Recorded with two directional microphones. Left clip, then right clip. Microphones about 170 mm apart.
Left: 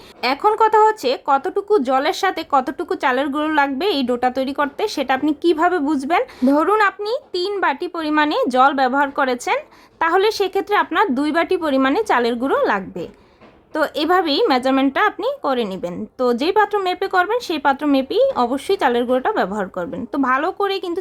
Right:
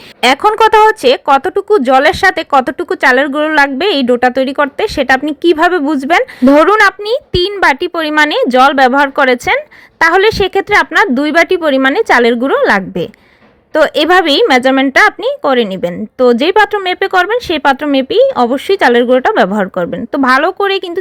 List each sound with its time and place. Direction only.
0.2 s a woman's voice: 30° right (ahead or behind)
12.7 s a woman's voice: 30° right (ahead or behind)